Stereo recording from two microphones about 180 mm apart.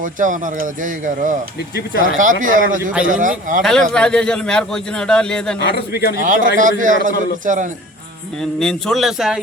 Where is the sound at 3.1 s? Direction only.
45° right (ahead or behind).